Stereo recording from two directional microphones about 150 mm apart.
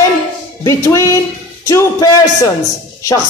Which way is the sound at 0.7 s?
20° left (ahead or behind).